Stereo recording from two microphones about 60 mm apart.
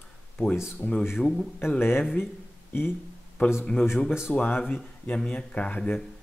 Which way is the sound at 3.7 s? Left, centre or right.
Left.